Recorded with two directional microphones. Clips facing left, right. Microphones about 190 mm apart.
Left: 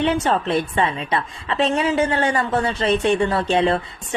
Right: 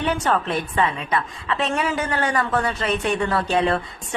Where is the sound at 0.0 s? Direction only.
25° left (ahead or behind).